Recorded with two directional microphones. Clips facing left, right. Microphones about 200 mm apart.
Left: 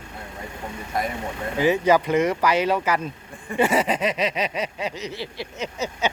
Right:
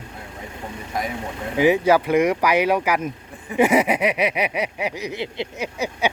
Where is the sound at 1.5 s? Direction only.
15° right (ahead or behind).